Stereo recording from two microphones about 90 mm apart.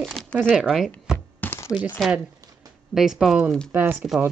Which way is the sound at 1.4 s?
20° left (ahead or behind).